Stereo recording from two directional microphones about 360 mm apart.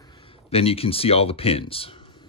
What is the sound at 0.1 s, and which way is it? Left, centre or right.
Speech, centre.